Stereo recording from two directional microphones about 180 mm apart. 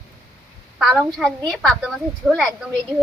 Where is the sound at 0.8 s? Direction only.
Centre (ahead or behind).